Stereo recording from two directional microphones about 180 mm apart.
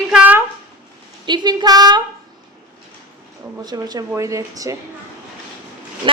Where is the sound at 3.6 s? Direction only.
20° right (ahead or behind).